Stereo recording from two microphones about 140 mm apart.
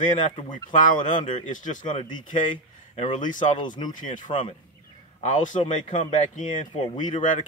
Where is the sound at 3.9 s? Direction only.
65° left (ahead or behind).